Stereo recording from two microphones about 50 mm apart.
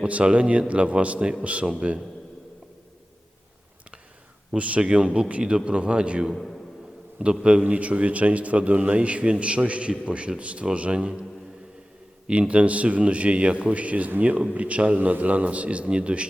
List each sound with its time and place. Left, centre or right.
0.0 s a man's voice: right
4.5 s a man's voice: right
6.3 s a man's voice: centre
7.4 s a man's voice: right
12.3 s a man's voice: right